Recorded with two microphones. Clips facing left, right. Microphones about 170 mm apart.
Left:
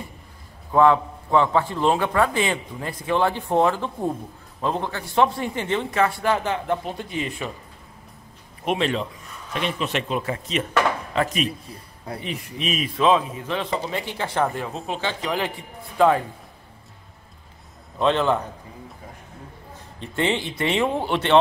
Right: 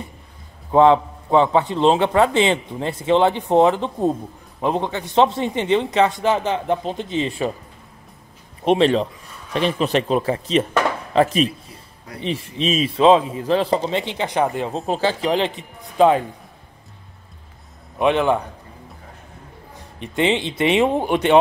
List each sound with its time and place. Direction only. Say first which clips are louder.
0.7 s a man's voice: right 4 dB; 20° right (ahead or behind)
8.6 s a man's voice: right 7 dB; 30° right (ahead or behind)
14.7 s a man's voice: right 7 dB; 35° right (ahead or behind); by 16.3 s 20° right (ahead or behind)
17.9 s speech: right 3 dB; 15° right (ahead or behind)
20.0 s speech: right 4 dB; 15° right (ahead or behind)